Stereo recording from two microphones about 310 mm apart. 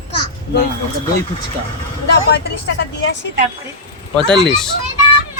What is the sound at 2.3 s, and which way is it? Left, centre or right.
Speech, left.